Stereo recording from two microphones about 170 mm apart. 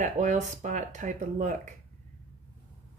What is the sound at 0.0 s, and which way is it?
A woman's voice, 45° right (ahead or behind).